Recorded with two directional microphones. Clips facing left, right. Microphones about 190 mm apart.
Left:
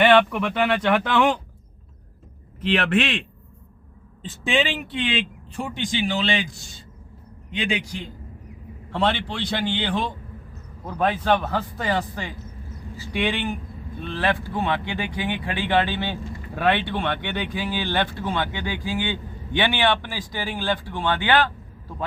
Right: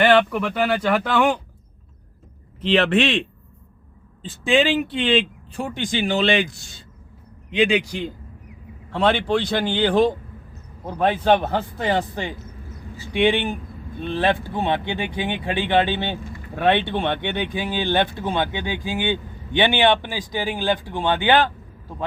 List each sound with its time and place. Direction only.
0.0 s speech: centre (ahead or behind)
2.6 s speech: 25° right (ahead or behind)
5.5 s a man's voice: 45° right (ahead or behind)
7.5 s a man's voice: 85° right
8.9 s a man's voice: 50° right (ahead or behind)
10.8 s speech: 30° right (ahead or behind)